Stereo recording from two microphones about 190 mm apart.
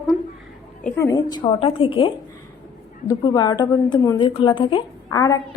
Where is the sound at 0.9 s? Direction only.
15° left (ahead or behind).